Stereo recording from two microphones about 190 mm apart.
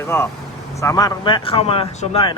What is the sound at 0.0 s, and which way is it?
A man's voice, 15° left (ahead or behind).